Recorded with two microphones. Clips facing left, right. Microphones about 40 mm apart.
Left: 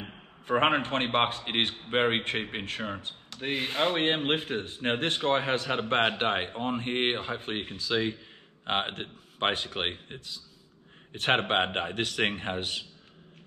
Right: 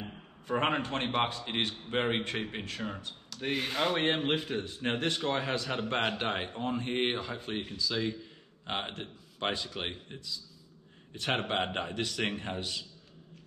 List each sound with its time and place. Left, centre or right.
0.0 s speech: left
3.4 s a man's voice: centre; by 12.8 s left